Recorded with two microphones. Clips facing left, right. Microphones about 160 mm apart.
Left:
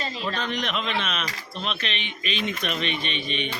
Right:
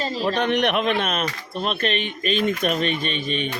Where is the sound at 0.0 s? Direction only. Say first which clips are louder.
Right 7 dB; 40° right (ahead or behind).